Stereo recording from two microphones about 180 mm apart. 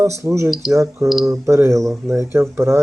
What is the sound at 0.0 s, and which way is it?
Speech, 15° right (ahead or behind).